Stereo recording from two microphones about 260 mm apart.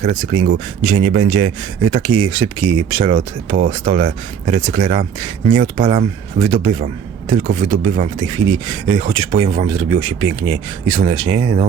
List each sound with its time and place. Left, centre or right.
0.0 s a man's voice: right
8.2 s speech: centre